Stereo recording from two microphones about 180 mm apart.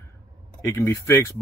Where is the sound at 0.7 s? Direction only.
15° left (ahead or behind).